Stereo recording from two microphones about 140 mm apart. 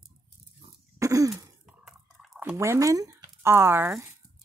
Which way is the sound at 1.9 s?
5° right (ahead or behind).